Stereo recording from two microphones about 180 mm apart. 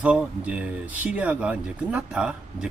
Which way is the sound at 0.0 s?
5° right (ahead or behind).